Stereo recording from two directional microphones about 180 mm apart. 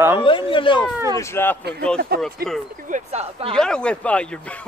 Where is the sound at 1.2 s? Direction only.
15° left (ahead or behind).